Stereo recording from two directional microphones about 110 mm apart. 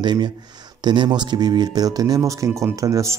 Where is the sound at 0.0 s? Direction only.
40° right (ahead or behind).